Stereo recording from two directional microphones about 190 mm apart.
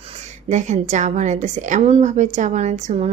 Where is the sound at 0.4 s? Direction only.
40° right (ahead or behind).